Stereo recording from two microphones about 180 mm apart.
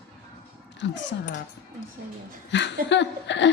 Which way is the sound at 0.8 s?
85° left.